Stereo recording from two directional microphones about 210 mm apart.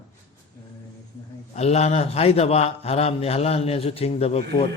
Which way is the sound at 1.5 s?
30° left (ahead or behind).